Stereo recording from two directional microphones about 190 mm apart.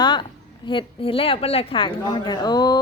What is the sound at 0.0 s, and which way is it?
A woman's voice, 25° left (ahead or behind).